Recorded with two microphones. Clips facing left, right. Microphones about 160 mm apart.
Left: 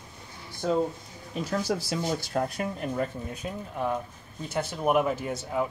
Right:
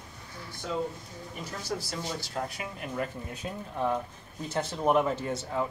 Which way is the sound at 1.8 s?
60° left (ahead or behind).